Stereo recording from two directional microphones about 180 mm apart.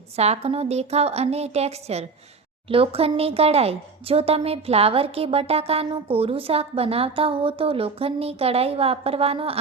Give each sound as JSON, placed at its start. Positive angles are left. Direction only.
{"t": 0.2, "sound": "speech", "side_deg": -35}